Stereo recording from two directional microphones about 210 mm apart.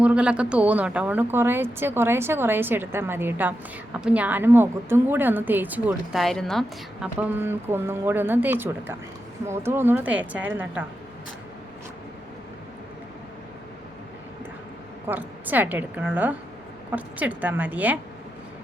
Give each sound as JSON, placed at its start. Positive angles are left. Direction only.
{"t": 0.0, "sound": "a woman's voice", "side_deg": -5}
{"t": 15.0, "sound": "a woman's voice", "side_deg": -10}